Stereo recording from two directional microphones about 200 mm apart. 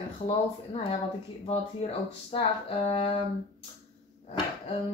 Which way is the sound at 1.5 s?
30° left (ahead or behind).